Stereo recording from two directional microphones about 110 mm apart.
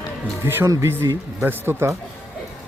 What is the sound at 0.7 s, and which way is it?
Speech, 25° right (ahead or behind).